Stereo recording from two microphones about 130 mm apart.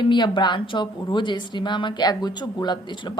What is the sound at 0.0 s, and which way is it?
A woman's voice, 35° left (ahead or behind).